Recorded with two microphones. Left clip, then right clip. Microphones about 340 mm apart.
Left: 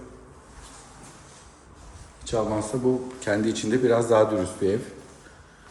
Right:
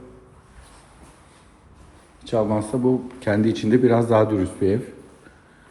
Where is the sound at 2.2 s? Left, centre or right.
Centre.